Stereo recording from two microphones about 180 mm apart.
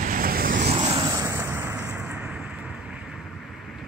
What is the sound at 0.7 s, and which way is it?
Vehicle, 25° right (ahead or behind).